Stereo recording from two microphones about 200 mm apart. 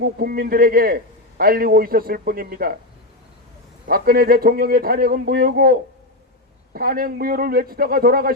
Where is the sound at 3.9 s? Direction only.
50° right (ahead or behind).